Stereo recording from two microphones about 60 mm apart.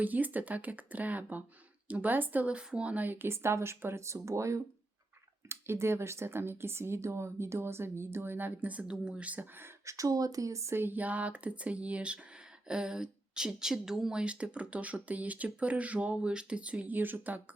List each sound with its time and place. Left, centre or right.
0.0 s speech: right
2.5 s speech: centre
9.8 s speech: right
10.8 s speech: right
16.8 s speech: right